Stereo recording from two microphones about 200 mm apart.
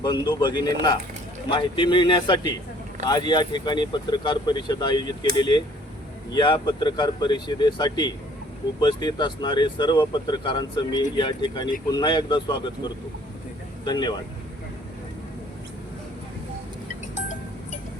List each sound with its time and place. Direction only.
0.0 s speech: 20° left (ahead or behind)
17.2 s cowbell: 35° left (ahead or behind)